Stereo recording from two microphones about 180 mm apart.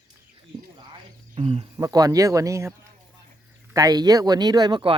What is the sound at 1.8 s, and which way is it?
Speech, 20° right (ahead or behind).